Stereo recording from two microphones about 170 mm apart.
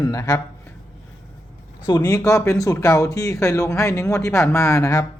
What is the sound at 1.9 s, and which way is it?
Speech, 20° left (ahead or behind).